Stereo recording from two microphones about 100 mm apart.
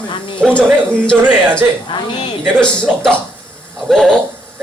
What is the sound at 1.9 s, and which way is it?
Speech, 55° left (ahead or behind).